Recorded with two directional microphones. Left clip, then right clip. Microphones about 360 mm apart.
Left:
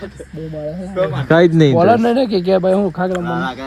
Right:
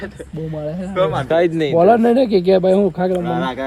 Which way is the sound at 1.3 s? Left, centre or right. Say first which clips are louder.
Left 7 dB; left.